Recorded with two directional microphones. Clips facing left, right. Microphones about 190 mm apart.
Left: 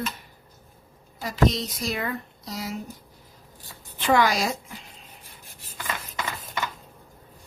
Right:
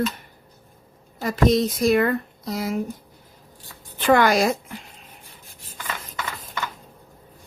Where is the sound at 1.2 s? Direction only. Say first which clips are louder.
Right 5 dB; 50° right (ahead or behind).